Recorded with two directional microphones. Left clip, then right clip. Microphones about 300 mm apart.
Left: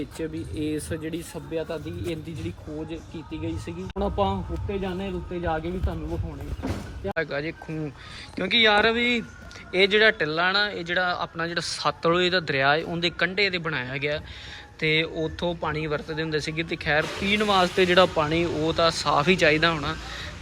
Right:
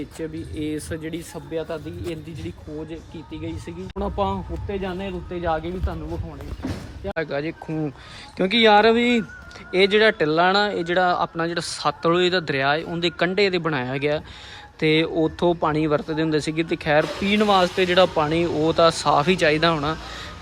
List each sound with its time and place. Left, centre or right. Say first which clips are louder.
0.2 s speech: right 1 dB; centre
17.1 s speech: right 2 dB; right
17.3 s speech: right 3 dB; centre